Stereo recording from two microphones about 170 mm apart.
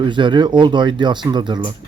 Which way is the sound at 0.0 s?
25° right (ahead or behind).